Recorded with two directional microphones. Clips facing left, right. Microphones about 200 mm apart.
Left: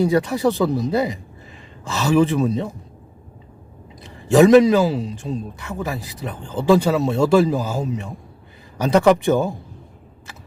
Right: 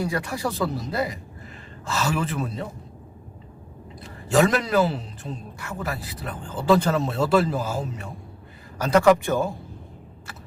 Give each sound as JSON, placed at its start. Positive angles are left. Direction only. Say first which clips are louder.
{"t": 0.0, "sound": "speech", "louder": "left 9 dB", "side_deg": 25}
{"t": 4.3, "sound": "speech", "louder": "left 9 dB", "side_deg": 15}